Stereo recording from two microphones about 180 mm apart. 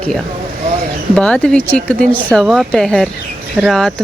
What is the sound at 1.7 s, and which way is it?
Speech, 50° right (ahead or behind).